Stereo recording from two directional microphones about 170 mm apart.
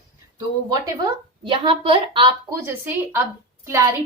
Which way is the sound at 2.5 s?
15° right (ahead or behind).